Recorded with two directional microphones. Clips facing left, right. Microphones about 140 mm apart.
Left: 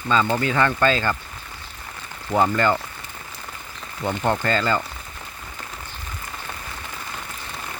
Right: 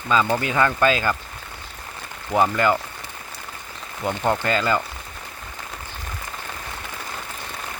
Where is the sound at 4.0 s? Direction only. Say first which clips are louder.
Even; 10° right (ahead or behind).